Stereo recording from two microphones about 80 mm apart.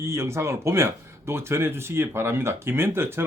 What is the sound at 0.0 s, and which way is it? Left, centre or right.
Speech, right.